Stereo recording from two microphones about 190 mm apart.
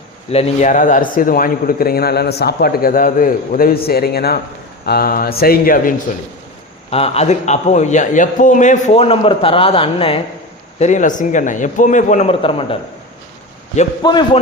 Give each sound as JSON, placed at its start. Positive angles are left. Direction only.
{"t": 0.3, "sound": "a man's voice", "side_deg": 35}
{"t": 6.9, "sound": "a man's voice", "side_deg": 30}
{"t": 14.0, "sound": "speech", "side_deg": 25}